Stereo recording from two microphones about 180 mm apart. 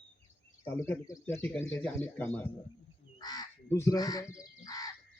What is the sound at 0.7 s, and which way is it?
Speech, 15° left (ahead or behind).